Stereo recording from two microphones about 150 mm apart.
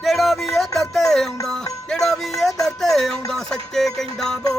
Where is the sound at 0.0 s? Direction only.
Centre (ahead or behind).